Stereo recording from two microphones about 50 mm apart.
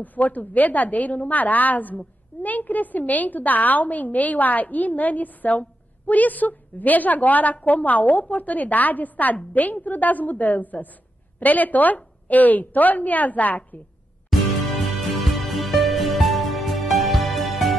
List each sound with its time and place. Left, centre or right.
0.0 s a woman's voice: left
14.8 s music: centre